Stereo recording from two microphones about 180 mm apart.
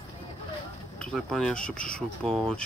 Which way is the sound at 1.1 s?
Centre (ahead or behind).